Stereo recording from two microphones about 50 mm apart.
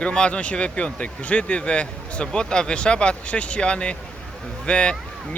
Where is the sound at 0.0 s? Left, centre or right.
Centre.